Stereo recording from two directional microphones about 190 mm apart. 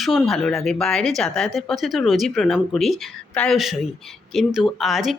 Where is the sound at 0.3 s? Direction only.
Centre (ahead or behind).